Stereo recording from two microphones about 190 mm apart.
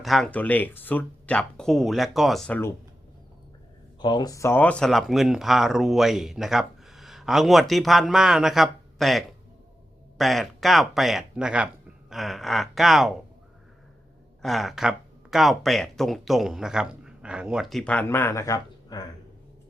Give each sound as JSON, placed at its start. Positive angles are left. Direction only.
{"t": 0.0, "sound": "speech", "side_deg": 0}
{"t": 4.0, "sound": "speech", "side_deg": 20}
{"t": 14.4, "sound": "speech", "side_deg": 0}